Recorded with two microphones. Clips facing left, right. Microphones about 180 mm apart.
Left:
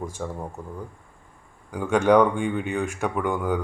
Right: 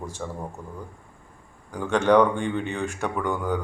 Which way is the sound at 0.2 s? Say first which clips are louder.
Left 1 dB; 5° left (ahead or behind).